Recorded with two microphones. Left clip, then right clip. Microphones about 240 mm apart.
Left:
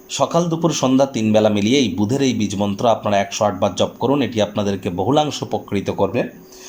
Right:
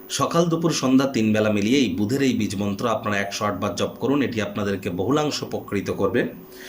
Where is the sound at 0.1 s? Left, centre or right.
Centre.